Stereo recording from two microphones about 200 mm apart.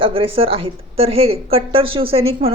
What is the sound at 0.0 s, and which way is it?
A woman's voice, 25° right (ahead or behind).